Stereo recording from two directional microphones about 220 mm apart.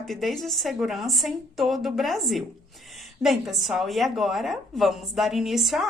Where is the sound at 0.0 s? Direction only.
Centre (ahead or behind).